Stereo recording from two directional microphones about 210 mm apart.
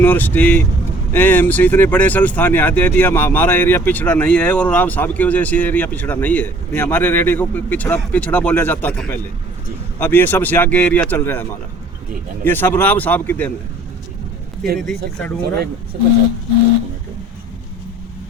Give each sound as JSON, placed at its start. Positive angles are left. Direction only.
{"t": 0.0, "sound": "speech", "side_deg": 10}
{"t": 12.5, "sound": "speech", "side_deg": 10}
{"t": 14.8, "sound": "speech", "side_deg": 5}
{"t": 15.9, "sound": "speech", "side_deg": -45}